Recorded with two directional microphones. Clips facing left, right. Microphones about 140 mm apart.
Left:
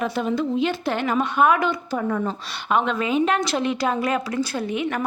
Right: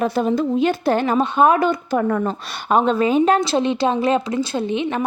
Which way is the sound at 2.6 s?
35° right (ahead or behind).